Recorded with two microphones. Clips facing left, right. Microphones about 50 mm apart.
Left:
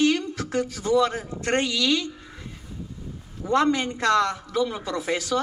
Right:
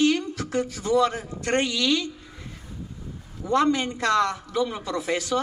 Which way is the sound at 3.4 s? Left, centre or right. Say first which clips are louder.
Even; left.